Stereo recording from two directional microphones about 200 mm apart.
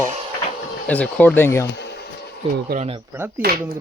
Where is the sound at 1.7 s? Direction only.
55° left (ahead or behind).